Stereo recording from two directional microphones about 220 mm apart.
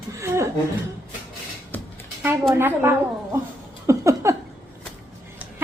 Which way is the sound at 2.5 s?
10° right (ahead or behind).